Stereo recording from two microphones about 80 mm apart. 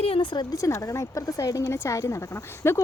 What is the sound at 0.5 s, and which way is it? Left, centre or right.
Speech, left.